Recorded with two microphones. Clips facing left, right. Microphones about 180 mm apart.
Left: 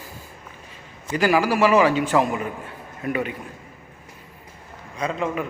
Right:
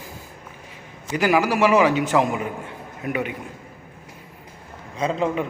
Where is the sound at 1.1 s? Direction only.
15° right (ahead or behind).